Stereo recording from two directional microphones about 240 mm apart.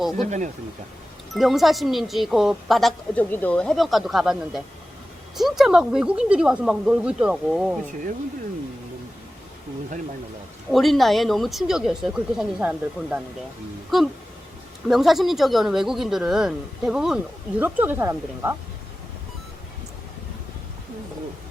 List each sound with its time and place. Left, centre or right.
0.2 s speech: right
1.3 s speech: centre
10.7 s speech: centre